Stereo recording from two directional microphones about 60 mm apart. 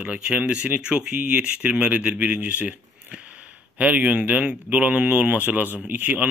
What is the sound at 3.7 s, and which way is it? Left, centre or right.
Speech, right.